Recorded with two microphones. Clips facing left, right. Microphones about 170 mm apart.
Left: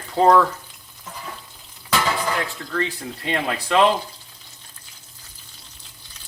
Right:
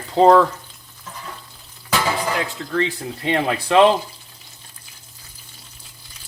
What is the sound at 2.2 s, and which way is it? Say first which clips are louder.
Speech: right 2 dB; 20° right (ahead or behind).